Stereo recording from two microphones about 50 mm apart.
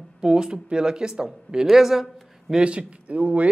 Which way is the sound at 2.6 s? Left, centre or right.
Right.